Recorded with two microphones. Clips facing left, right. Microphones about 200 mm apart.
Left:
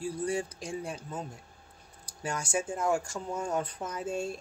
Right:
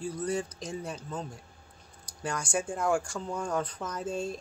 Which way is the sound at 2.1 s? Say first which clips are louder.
Even; 30° left (ahead or behind).